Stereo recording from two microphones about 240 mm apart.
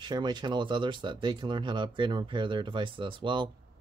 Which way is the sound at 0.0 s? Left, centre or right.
Centre.